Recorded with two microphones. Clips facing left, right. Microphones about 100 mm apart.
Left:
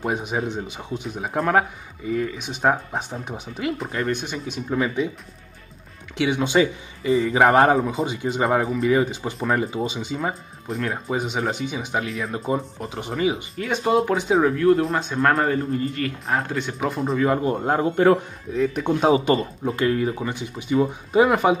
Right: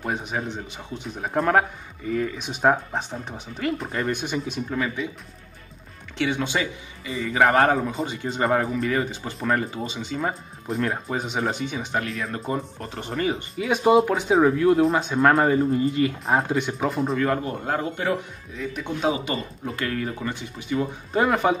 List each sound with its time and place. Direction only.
0.0 s a man's voice: 15° left (ahead or behind)
1.0 s speech: 5° left (ahead or behind)
3.0 s speech: 10° left (ahead or behind)
4.6 s speech: 20° left (ahead or behind)
6.1 s a man's voice: 10° left (ahead or behind)
7.1 s a man's voice: 30° left (ahead or behind)
7.7 s speech: 5° left (ahead or behind)
13.6 s speech: 5° right (ahead or behind)
16.7 s speech: centre (ahead or behind)
17.5 s speech: 25° left (ahead or behind)
18.6 s speech: 45° left (ahead or behind)
19.6 s a man's voice: 20° left (ahead or behind)